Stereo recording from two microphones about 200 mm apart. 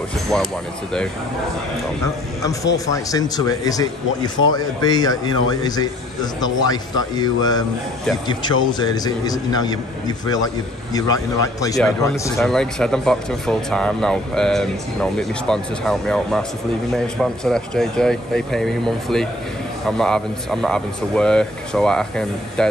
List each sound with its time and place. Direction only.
0.3 s speech: 5° left (ahead or behind)
2.4 s a man's voice: 15° left (ahead or behind)
12.1 s speech: 5° left (ahead or behind)